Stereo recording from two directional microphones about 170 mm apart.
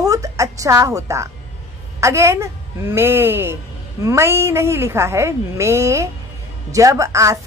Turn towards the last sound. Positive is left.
turn(degrees=-20)  # may be behind; listen again after turning